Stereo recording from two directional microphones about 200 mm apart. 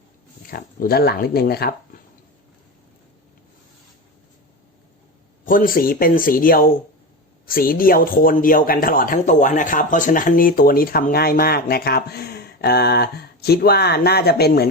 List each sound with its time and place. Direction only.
0.5 s speech: 50° left (ahead or behind)
5.5 s speech: 45° left (ahead or behind)